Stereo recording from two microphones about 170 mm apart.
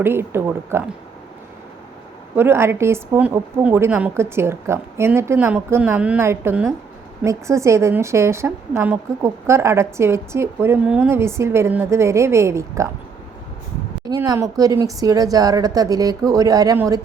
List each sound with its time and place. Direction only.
0.0 s a woman's voice: 15° right (ahead or behind)
2.3 s a woman's voice: 15° right (ahead or behind)
14.1 s a woman's voice: 20° right (ahead or behind)